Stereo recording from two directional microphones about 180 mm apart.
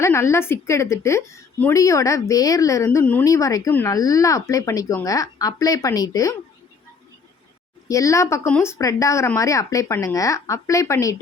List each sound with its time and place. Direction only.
0.0 s a woman's voice: 15° left (ahead or behind)
7.9 s a woman's voice: 15° left (ahead or behind)